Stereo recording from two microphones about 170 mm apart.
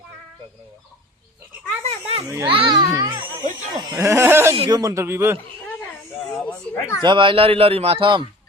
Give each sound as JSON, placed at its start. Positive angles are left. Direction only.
{"t": 1.8, "sound": "a sound", "side_deg": -35}
{"t": 2.2, "sound": "speech", "side_deg": -15}
{"t": 2.5, "sound": "children playing", "side_deg": -30}
{"t": 3.8, "sound": "speech", "side_deg": -20}
{"t": 6.1, "sound": "a sound", "side_deg": 5}
{"t": 6.7, "sound": "speech", "side_deg": 15}
{"t": 7.0, "sound": "speech", "side_deg": -30}